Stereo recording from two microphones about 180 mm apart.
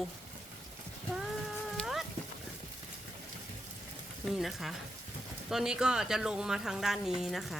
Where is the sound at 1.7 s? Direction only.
Centre (ahead or behind).